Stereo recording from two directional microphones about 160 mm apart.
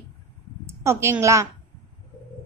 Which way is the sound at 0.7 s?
15° right (ahead or behind).